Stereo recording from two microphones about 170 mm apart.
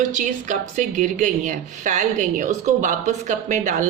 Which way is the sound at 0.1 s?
45° right (ahead or behind).